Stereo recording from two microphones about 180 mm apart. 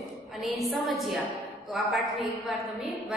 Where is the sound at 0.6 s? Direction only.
Centre (ahead or behind).